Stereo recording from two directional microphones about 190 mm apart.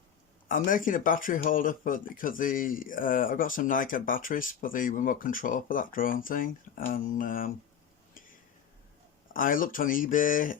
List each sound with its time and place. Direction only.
0.4 s speech: 45° left (ahead or behind)
9.3 s speech: 45° left (ahead or behind)